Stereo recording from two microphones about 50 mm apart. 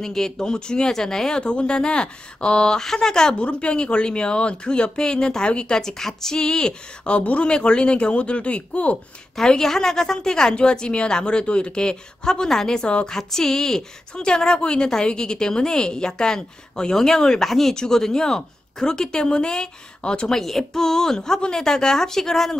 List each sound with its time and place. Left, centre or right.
0.0 s speech: centre
9.4 s speech: centre
20.3 s speech: centre